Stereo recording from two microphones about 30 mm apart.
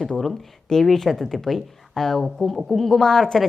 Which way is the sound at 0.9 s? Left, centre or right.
Centre.